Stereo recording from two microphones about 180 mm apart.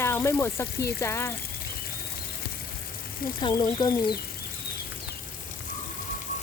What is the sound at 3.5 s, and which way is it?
Speech, 25° left (ahead or behind).